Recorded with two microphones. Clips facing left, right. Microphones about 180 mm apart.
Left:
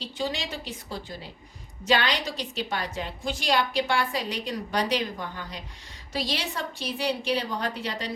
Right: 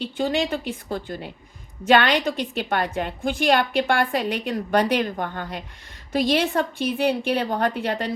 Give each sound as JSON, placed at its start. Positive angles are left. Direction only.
{"t": 0.0, "sound": "a woman's voice", "side_deg": -55}